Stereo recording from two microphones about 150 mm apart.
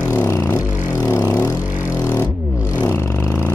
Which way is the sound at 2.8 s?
15° left (ahead or behind).